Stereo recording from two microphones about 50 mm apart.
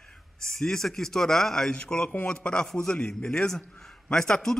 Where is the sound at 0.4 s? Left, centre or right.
Centre.